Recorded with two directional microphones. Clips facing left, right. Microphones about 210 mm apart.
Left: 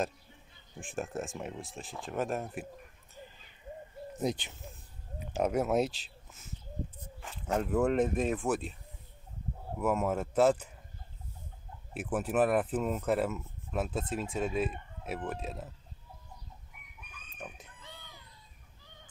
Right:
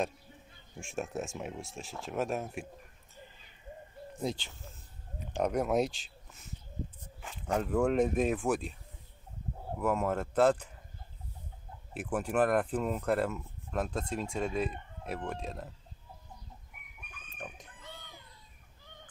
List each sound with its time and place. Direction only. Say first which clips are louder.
0.7 s speech: even; centre (ahead or behind)
4.2 s speech: left 2 dB; 20° left (ahead or behind)
5.3 s speech: left 1 dB; 5° left (ahead or behind)
9.8 s speech: left 1 dB; 5° left (ahead or behind)
11.9 s speech: left 1 dB; 5° left (ahead or behind)